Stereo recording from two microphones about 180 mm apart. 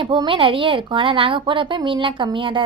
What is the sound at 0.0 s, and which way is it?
A woman's voice, 25° right (ahead or behind).